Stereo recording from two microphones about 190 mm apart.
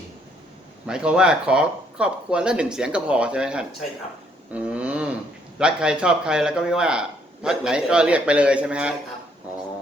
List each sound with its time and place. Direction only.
0.9 s speech: 5° right (ahead or behind)
4.5 s a sound: 5° right (ahead or behind)
5.5 s speech: 5° right (ahead or behind)